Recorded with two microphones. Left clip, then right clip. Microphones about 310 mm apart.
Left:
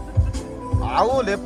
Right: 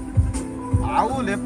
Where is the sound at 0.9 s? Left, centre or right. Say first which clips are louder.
Left 3 dB; centre.